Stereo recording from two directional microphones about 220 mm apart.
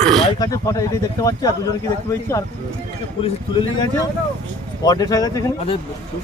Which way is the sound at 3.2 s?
20° left (ahead or behind).